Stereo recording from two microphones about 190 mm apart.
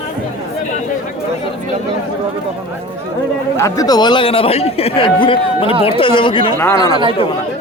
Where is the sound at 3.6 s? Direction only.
20° left (ahead or behind).